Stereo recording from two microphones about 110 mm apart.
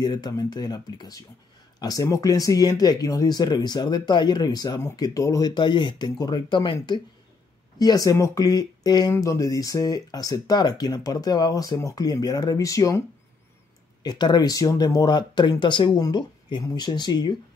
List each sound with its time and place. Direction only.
0.0 s speech: 40° left (ahead or behind)
5.5 s speech: 45° left (ahead or behind)
7.8 s speech: 35° left (ahead or behind)
14.0 s speech: 40° left (ahead or behind)